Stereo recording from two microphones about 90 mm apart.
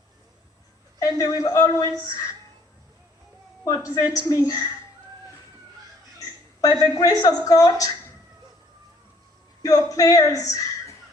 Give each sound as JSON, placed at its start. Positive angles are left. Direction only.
{"t": 0.9, "sound": "a woman's voice", "side_deg": 40}
{"t": 3.6, "sound": "a woman's voice", "side_deg": 40}
{"t": 6.1, "sound": "speech", "side_deg": 40}
{"t": 9.6, "sound": "speech", "side_deg": 40}